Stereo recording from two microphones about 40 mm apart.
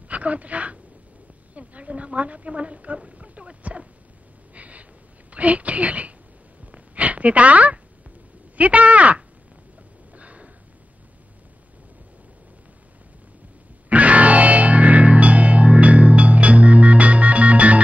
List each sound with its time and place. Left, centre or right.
0.1 s a woman's voice: right
3.1 s a sound: right
5.3 s a woman's voice: right
6.6 s a sound: right
8.5 s speech: right
10.1 s sniff: right
13.8 s music: right